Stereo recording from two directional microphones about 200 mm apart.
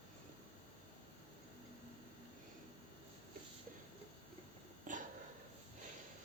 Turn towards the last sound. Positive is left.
turn(degrees=-40)  # may be behind; listen again after turning